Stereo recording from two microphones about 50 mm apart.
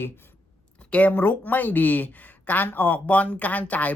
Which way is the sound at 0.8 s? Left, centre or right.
Left.